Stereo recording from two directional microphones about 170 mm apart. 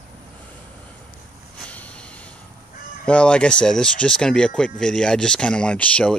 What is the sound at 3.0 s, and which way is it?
Speech, 5° left (ahead or behind).